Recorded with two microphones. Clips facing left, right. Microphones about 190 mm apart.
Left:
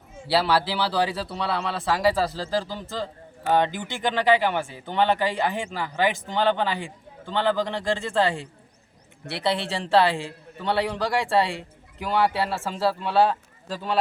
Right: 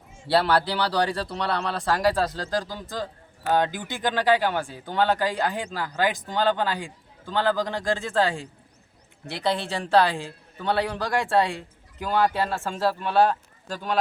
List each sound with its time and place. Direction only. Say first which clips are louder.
0.3 s speech: right 1 dB; 5° left (ahead or behind)